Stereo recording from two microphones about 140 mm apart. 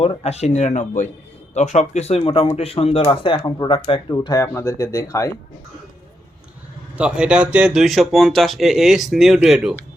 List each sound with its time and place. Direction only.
0.0 s speech: 45° left (ahead or behind); by 5.3 s 20° left (ahead or behind)
6.9 s speech: 5° right (ahead or behind)